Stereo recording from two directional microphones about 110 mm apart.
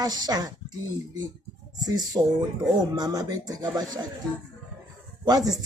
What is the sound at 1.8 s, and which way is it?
Speech, 35° right (ahead or behind).